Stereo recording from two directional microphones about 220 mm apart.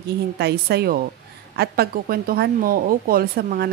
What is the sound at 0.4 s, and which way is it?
A woman's voice, 50° right (ahead or behind).